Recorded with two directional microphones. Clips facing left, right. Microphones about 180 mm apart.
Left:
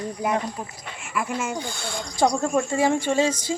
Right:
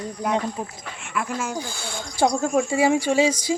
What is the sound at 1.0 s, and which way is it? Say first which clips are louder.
A woman's voice: even; centre (ahead or behind).